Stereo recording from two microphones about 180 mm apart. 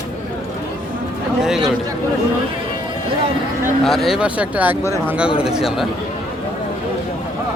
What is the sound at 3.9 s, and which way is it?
Speech, centre (ahead or behind).